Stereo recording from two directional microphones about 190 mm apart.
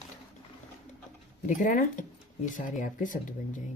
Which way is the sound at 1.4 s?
40° left (ahead or behind).